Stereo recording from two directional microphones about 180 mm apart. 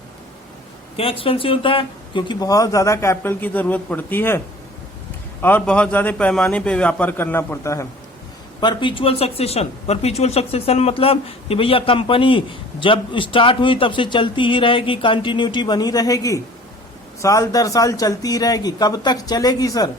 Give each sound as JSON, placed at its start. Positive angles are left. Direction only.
{"t": 0.9, "sound": "speech", "side_deg": 30}
{"t": 5.4, "sound": "a man's voice", "side_deg": 10}
{"t": 8.6, "sound": "speech", "side_deg": 25}